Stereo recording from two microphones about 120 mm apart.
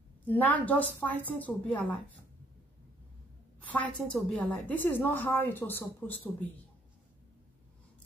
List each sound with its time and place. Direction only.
0.3 s a woman's voice: 15° left (ahead or behind)
3.6 s a woman's voice: 15° left (ahead or behind)